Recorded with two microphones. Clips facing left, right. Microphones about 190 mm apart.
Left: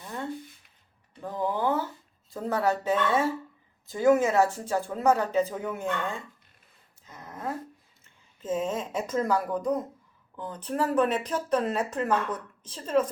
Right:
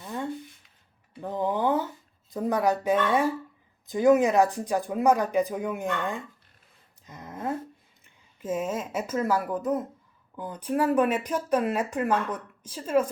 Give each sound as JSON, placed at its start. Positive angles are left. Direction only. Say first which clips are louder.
{"t": 1.2, "sound": "speech", "louder": "right 2 dB", "side_deg": -20}
{"t": 7.0, "sound": "a sound", "louder": "right 2 dB", "side_deg": -20}
{"t": 8.0, "sound": "speech", "louder": "right 1 dB", "side_deg": -10}